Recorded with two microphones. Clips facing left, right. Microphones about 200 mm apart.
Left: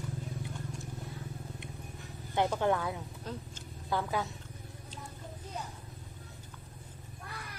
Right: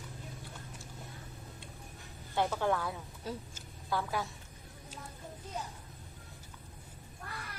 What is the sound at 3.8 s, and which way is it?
Speech, 20° left (ahead or behind).